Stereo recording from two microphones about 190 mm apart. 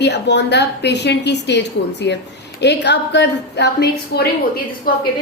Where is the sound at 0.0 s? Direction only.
65° left (ahead or behind).